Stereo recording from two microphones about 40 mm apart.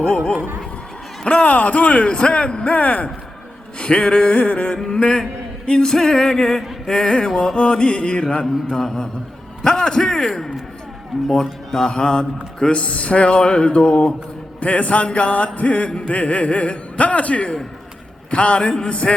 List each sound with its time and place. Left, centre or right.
0.0 s a man's voice: centre
5.6 s a sound: centre
6.9 s speech: centre
8.7 s a sound: centre
9.6 s a man's voice: centre
11.1 s music: centre
11.7 s a man's voice: centre